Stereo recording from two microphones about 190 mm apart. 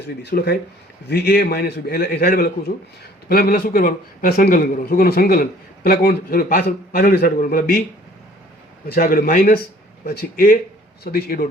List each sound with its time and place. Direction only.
0.2 s a man's voice: 60° left (ahead or behind)
8.9 s a man's voice: 45° left (ahead or behind)